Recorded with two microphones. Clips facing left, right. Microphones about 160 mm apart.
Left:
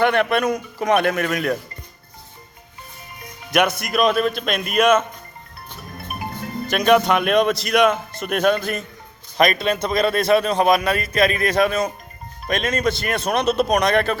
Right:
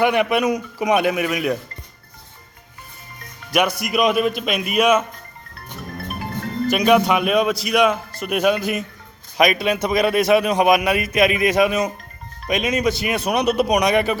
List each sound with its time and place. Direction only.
0.0 s a man's voice: 10° right (ahead or behind)
3.8 s a man's voice: 10° right (ahead or behind)
6.7 s a man's voice: 5° right (ahead or behind)